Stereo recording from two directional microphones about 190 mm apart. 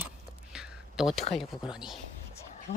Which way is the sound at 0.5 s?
Centre (ahead or behind).